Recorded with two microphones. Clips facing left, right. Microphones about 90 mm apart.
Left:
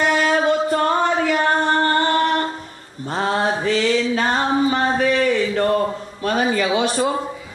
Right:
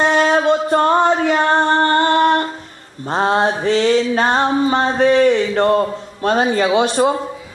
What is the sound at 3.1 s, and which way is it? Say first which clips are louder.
Mantra: right 4 dB; 30° right (ahead or behind).